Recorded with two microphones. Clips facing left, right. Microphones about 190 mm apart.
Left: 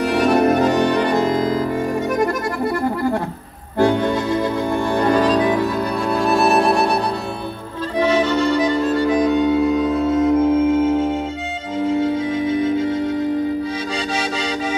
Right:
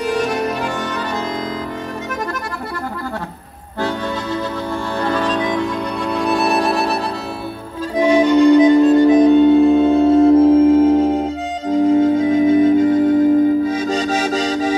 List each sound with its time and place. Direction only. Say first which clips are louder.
0.0 s music: left 4 dB; 60° left (ahead or behind)
0.7 s music: left 7 dB; 15° left (ahead or behind)
5.1 s music: left 2 dB; 10° left (ahead or behind)
8.0 s music: right 6 dB; 15° right (ahead or behind); by 14.8 s 40° right (ahead or behind)